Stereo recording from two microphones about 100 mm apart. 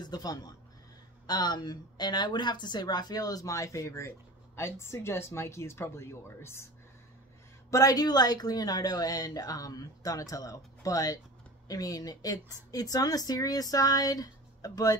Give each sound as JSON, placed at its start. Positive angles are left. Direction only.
{"t": 0.0, "sound": "a woman's voice", "side_deg": 40}
{"t": 7.7, "sound": "speech", "side_deg": 40}